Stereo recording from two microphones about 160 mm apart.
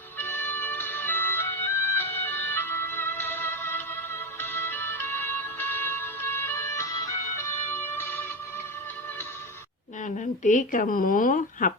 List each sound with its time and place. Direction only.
0.2 s music: 15° left (ahead or behind)
10.0 s speech: 50° left (ahead or behind)